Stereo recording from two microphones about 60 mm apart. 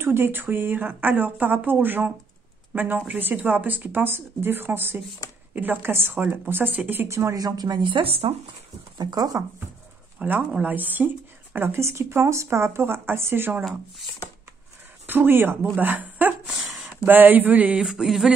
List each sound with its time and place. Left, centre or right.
0.0 s speech: right
7.1 s speech: right
7.3 s speech: right
8.9 s speech: right
10.2 s a woman's voice: right
11.8 s speech: right
15.0 s speech: right
16.4 s a sound: centre
17.0 s speech: right
17.7 s a sound: centre